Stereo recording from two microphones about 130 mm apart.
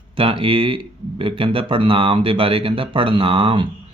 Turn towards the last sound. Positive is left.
turn(degrees=-45)  # may be behind; listen again after turning